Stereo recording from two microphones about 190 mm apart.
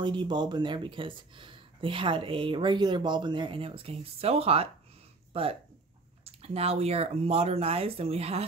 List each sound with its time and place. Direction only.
0.0 s speech: 25° right (ahead or behind)